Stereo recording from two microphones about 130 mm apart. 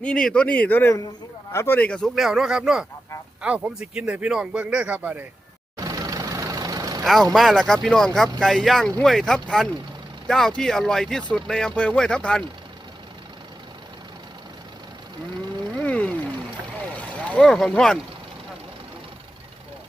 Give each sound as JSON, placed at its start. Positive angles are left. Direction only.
{"t": 0.0, "sound": "a man's voice", "side_deg": 5}
{"t": 5.7, "sound": "vehicle", "side_deg": -25}
{"t": 7.0, "sound": "speech", "side_deg": 0}
{"t": 15.8, "sound": "a sound", "side_deg": 10}
{"t": 17.2, "sound": "speech", "side_deg": 10}